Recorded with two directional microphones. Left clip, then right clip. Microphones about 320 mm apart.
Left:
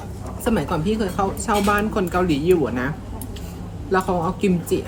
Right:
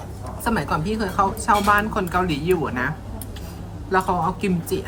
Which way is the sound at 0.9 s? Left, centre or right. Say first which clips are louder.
Right 2 dB; centre.